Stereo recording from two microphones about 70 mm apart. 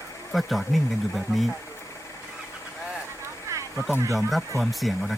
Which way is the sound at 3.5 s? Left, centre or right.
Right.